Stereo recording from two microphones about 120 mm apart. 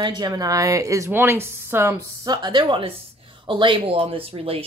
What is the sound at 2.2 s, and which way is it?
A woman's voice, 35° right (ahead or behind).